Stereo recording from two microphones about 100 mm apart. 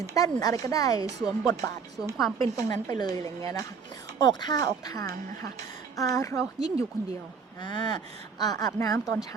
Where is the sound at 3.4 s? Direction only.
30° left (ahead or behind).